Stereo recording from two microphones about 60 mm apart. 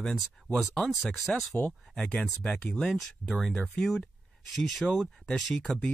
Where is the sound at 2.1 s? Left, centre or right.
Centre.